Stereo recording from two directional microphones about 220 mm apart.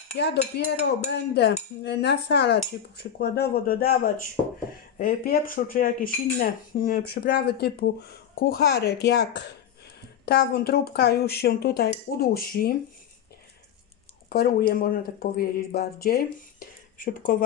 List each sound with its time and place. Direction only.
0.2 s speech: 50° left (ahead or behind)
14.3 s speech: 45° left (ahead or behind)